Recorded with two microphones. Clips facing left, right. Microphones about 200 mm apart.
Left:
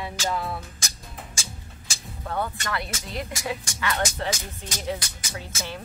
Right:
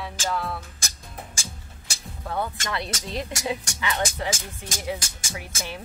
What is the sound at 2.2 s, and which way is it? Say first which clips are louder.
Speech: even; 10° right (ahead or behind).